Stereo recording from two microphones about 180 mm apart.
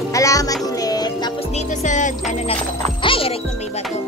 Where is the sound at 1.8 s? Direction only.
40° left (ahead or behind).